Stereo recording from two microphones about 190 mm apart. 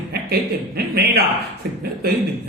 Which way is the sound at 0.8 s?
60° right (ahead or behind).